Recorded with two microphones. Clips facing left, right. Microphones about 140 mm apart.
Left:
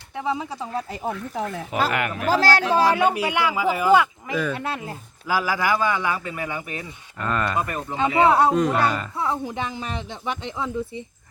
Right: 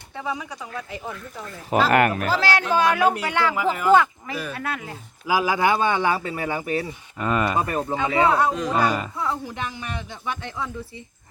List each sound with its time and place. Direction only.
0.2 s speech: 25° left (ahead or behind)
1.0 s speech: 60° left (ahead or behind)
1.9 s speech: 50° right (ahead or behind)
2.4 s speech: 40° left (ahead or behind)
3.1 s speech: 10° left (ahead or behind)
4.5 s speech: 25° left (ahead or behind)
5.2 s speech: 15° right (ahead or behind); by 6.8 s 35° right (ahead or behind)
7.2 s speech: 10° right (ahead or behind)
7.6 s speech: 30° right (ahead or behind)
7.9 s speech: 25° left (ahead or behind)